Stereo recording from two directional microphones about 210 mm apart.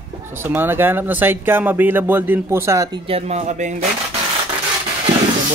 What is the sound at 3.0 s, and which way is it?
Speech, 30° right (ahead or behind).